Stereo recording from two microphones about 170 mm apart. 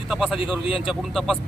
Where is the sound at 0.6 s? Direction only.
30° left (ahead or behind).